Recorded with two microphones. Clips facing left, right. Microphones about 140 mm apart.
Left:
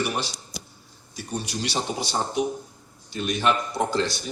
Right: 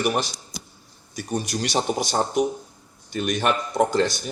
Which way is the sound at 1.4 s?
45° right (ahead or behind).